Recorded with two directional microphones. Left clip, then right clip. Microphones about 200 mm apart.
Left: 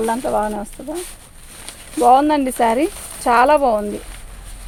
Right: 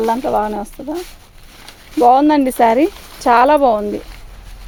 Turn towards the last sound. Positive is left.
turn(degrees=-45)  # may be behind; listen again after turning